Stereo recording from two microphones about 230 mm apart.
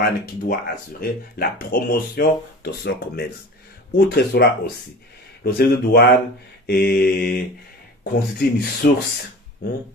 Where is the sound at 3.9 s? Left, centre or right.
Left.